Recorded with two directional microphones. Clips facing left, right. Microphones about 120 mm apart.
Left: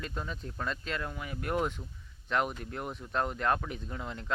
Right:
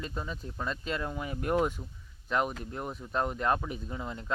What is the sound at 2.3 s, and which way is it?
Speech, centre (ahead or behind).